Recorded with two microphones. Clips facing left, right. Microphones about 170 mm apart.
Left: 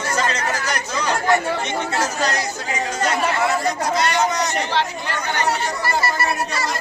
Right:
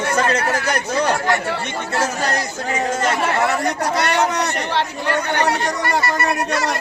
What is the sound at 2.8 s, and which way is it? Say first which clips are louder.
Speech: right 3 dB; 50° right (ahead or behind).